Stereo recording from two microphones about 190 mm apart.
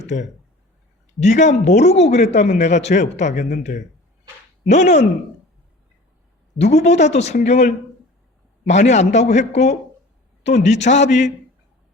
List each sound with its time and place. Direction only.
1.2 s speech: 40° left (ahead or behind)
6.7 s speech: 35° left (ahead or behind)